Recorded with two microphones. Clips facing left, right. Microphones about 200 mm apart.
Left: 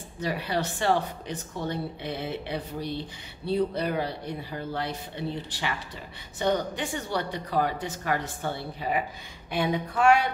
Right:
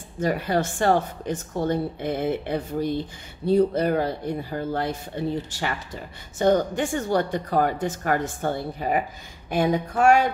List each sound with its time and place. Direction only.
0.2 s a woman's voice: 50° right (ahead or behind)